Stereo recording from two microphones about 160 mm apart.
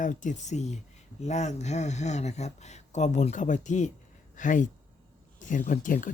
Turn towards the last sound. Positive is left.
turn(degrees=55)  # may be behind; listen again after turning